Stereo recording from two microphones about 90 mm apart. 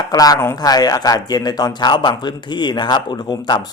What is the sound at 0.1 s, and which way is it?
Speech, 45° left (ahead or behind).